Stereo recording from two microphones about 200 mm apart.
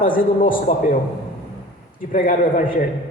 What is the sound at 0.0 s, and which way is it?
Speech, 45° left (ahead or behind).